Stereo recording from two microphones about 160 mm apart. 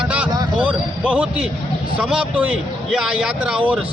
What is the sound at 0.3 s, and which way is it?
Vehicle, 25° right (ahead or behind).